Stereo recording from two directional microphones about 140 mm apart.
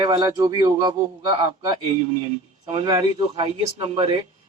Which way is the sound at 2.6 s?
35° right (ahead or behind).